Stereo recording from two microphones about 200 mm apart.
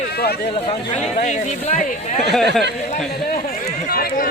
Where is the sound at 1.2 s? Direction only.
40° left (ahead or behind).